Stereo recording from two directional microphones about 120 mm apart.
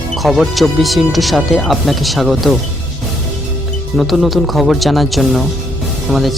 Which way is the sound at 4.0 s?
Centre (ahead or behind).